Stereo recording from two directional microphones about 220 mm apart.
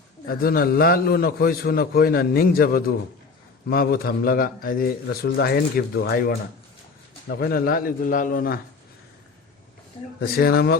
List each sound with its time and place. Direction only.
0.3 s a man's voice: 40° left (ahead or behind)
10.2 s a man's voice: 45° left (ahead or behind)